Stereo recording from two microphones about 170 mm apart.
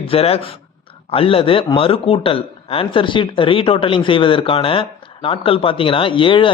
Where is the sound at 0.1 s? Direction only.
35° left (ahead or behind).